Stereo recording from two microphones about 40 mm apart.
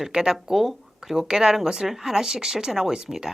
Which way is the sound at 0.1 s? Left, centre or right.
Centre.